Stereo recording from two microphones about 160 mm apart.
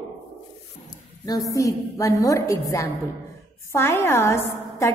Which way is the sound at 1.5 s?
20° left (ahead or behind).